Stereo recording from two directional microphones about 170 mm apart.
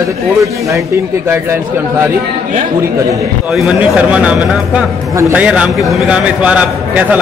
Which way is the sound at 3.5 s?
5° right (ahead or behind).